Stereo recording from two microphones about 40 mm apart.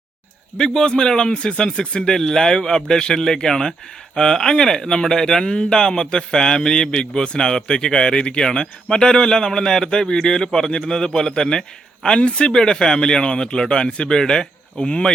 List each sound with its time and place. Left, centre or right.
0.5 s speech: centre
12.5 s speech: centre